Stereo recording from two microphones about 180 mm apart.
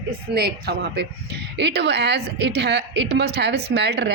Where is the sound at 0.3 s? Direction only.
60° right (ahead or behind).